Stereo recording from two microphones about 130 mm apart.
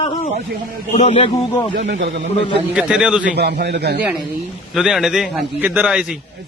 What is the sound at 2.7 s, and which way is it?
Speech, 5° right (ahead or behind).